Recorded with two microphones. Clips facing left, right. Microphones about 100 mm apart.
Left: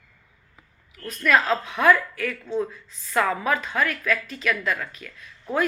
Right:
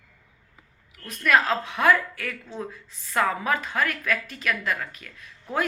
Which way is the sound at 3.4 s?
40° right (ahead or behind).